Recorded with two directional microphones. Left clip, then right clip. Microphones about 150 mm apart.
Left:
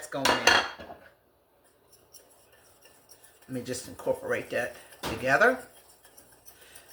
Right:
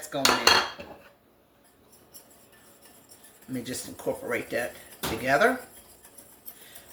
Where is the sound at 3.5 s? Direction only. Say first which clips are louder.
Even; 10° left (ahead or behind).